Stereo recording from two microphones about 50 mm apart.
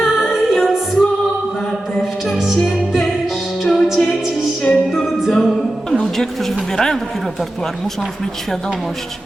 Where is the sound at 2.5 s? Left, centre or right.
Centre.